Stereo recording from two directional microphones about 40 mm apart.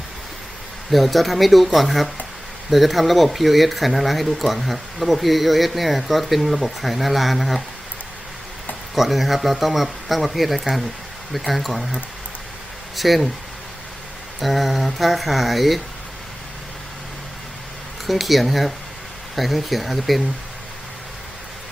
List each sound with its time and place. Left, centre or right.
0.9 s speech: centre
9.0 s speech: centre
13.0 s speech: centre
14.4 s speech: centre
18.0 s speech: centre